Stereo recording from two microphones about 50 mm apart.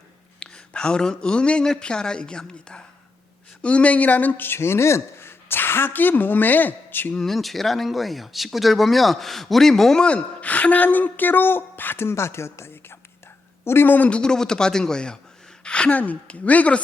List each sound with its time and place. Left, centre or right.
0.3 s a woman's voice: left
4.4 s a woman's voice: left
7.2 s speech: centre
10.0 s a woman's voice: left
14.1 s a woman's voice: centre